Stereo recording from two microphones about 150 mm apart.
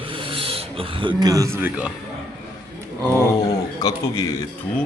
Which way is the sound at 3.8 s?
25° left (ahead or behind).